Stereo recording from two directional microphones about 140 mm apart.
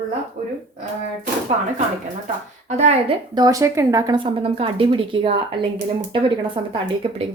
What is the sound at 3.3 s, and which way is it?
Speech, 25° right (ahead or behind).